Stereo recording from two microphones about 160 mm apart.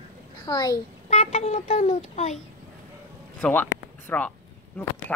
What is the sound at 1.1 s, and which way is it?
A child's voice, 45° left (ahead or behind).